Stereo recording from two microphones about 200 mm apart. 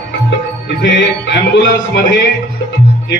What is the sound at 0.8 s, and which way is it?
Speech, 65° left (ahead or behind).